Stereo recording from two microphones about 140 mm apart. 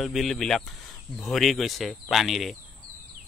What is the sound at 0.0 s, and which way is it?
Speech, centre (ahead or behind).